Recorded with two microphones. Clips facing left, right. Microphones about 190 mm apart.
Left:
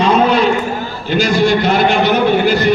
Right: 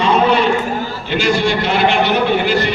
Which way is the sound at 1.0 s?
40° left (ahead or behind).